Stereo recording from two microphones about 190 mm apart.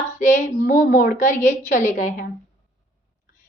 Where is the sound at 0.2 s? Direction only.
45° left (ahead or behind).